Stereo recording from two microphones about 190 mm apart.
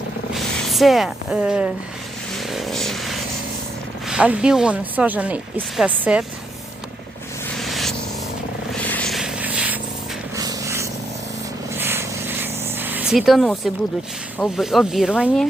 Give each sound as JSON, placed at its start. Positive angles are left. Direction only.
{"t": 0.3, "sound": "speech", "side_deg": 0}
{"t": 2.3, "sound": "vehicle", "side_deg": 0}
{"t": 4.0, "sound": "speech", "side_deg": -5}
{"t": 7.5, "sound": "a sound", "side_deg": 0}
{"t": 8.7, "sound": "vehicle", "side_deg": 5}
{"t": 10.3, "sound": "a sound", "side_deg": -15}
{"t": 14.3, "sound": "speech", "side_deg": 5}